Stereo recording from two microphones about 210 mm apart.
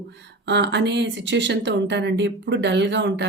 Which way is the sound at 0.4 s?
55° right (ahead or behind).